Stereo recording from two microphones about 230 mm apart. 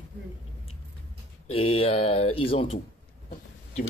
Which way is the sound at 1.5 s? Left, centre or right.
Left.